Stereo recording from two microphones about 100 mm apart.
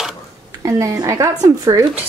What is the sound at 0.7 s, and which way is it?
A woman's voice, 30° right (ahead or behind).